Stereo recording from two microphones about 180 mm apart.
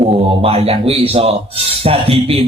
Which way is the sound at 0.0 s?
35° right (ahead or behind).